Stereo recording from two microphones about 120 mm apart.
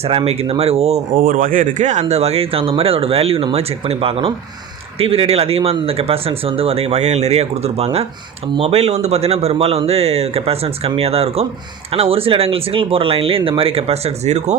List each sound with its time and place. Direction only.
0.0 s speech: 55° right (ahead or behind)
1.5 s speech: 85° right; by 14.5 s 70° right (ahead or behind)